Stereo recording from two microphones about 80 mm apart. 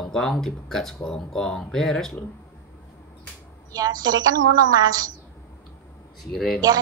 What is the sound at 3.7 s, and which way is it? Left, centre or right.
A woman's voice, right.